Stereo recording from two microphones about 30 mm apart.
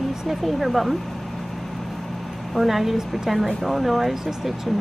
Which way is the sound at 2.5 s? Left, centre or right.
Centre.